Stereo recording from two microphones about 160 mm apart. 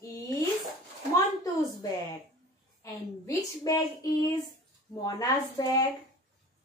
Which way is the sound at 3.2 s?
20° left (ahead or behind).